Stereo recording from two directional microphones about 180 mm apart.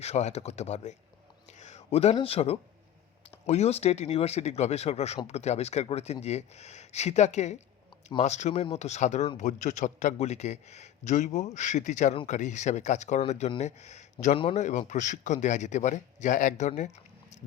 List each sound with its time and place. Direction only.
0.0 s speech: 40° left (ahead or behind)
14.3 s speech: 30° left (ahead or behind)
14.6 s a man's voice: 40° left (ahead or behind)